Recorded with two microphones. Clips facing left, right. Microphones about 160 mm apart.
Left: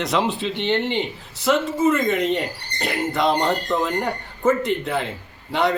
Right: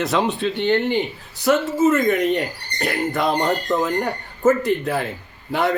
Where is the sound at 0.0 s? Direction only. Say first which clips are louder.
Right 2 dB; centre (ahead or behind).